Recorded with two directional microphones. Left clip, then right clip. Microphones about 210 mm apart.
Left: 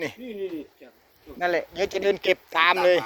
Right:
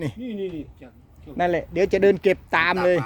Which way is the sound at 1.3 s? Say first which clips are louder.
Right 3 dB; 25° right (ahead or behind).